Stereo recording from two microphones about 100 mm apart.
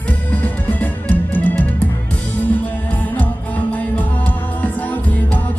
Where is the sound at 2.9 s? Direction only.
15° left (ahead or behind).